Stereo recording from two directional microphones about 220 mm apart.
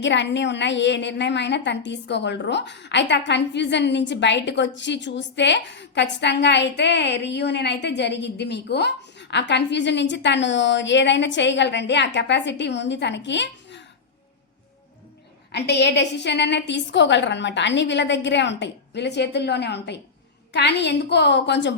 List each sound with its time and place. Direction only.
0.0 s a woman's voice: 55° left (ahead or behind)
15.5 s a woman's voice: 50° left (ahead or behind)